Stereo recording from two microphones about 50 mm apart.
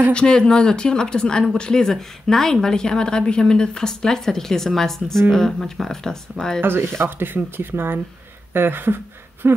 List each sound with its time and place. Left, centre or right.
0.1 s speech: centre
6.6 s speech: right